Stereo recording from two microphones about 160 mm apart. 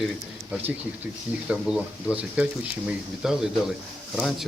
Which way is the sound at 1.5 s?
5° right (ahead or behind).